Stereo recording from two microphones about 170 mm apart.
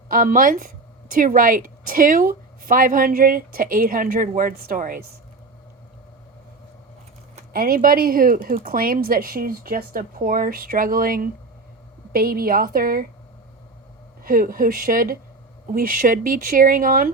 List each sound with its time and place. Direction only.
0.1 s speech: 55° right (ahead or behind)
7.3 s speech: 60° right (ahead or behind)
14.3 s speech: 55° right (ahead or behind)